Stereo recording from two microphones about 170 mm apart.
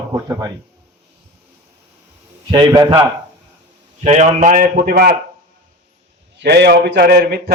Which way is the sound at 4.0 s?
40° right (ahead or behind).